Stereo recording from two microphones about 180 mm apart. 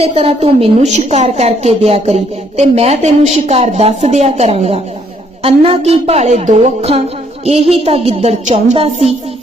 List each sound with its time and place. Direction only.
0.0 s a woman's voice: 35° right (ahead or behind)